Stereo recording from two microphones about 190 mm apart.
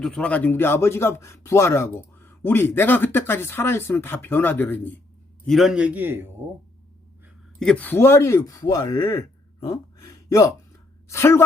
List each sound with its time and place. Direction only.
0.0 s a man's voice: 5° left (ahead or behind)
5.5 s a man's voice: centre (ahead or behind)
7.6 s a man's voice: 5° left (ahead or behind)